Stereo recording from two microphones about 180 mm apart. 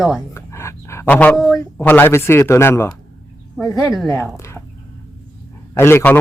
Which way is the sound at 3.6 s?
Centre (ahead or behind).